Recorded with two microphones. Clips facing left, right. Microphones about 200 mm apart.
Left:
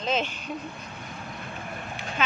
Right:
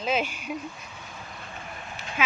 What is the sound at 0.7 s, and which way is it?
Vehicle, 60° left (ahead or behind).